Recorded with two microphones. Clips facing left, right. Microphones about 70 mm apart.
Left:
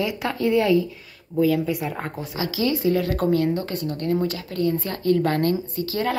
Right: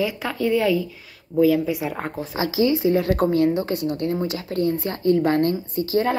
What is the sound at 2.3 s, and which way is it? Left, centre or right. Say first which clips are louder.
Speech: right 4 dB; right.